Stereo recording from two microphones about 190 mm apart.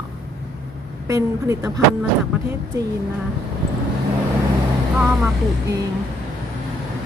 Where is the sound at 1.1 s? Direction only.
15° right (ahead or behind).